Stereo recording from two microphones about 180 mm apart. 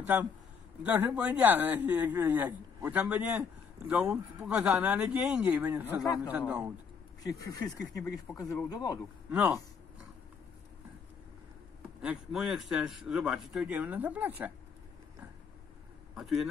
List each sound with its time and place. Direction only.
0.0 s a man's voice: 10° right (ahead or behind)
7.2 s speech: 20° left (ahead or behind)
9.3 s speech: 10° right (ahead or behind)
12.0 s speech: 5° right (ahead or behind)